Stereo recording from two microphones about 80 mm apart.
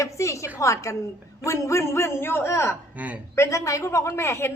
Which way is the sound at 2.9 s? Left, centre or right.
Centre.